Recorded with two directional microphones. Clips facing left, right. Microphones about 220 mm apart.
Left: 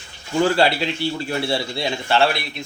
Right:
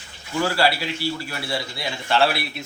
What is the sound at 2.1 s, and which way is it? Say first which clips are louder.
Speech: left 1 dB; 5° right (ahead or behind).